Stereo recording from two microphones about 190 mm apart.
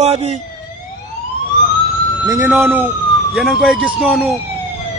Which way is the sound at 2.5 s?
10° right (ahead or behind).